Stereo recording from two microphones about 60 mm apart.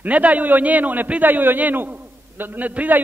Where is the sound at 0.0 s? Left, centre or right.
Right.